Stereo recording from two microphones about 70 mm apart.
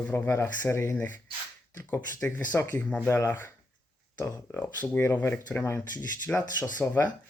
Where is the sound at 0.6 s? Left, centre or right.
Left.